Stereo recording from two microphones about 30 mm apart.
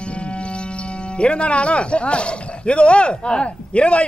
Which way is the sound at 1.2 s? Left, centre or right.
Left.